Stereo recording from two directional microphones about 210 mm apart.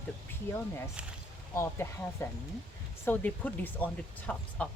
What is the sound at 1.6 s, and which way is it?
Speech, 10° left (ahead or behind).